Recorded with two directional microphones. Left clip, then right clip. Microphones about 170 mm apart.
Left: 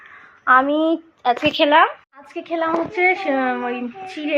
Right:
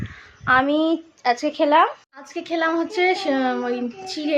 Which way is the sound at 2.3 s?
15° right (ahead or behind).